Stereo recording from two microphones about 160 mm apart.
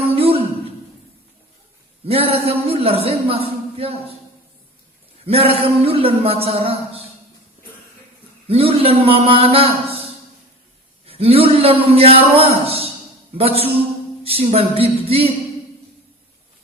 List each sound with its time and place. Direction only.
0.2 s a sound: 35° right (ahead or behind)
2.0 s speech: 40° right (ahead or behind)
5.2 s a man's voice: 40° right (ahead or behind)
8.4 s a man's voice: 35° right (ahead or behind)
11.0 s a man's voice: 35° right (ahead or behind)